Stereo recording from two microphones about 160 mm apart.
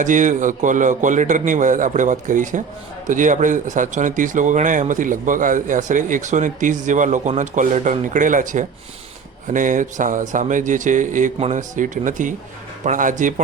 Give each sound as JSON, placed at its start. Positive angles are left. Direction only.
{"t": 0.0, "sound": "speech", "side_deg": -50}